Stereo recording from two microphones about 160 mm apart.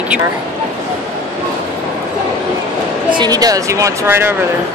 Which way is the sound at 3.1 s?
25° right (ahead or behind).